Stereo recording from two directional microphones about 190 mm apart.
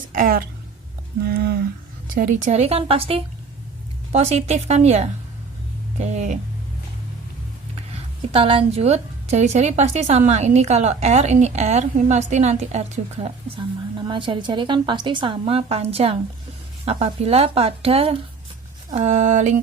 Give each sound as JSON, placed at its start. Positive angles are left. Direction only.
{"t": 0.1, "sound": "a woman's voice", "side_deg": -45}
{"t": 2.1, "sound": "a woman's voice", "side_deg": -40}
{"t": 8.3, "sound": "a woman's voice", "side_deg": -30}
{"t": 13.2, "sound": "a woman's voice", "side_deg": -25}